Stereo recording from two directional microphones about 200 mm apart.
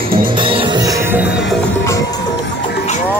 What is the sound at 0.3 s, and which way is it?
Music, 25° right (ahead or behind).